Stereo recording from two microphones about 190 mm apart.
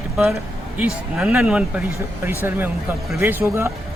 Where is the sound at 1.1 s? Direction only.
5° right (ahead or behind).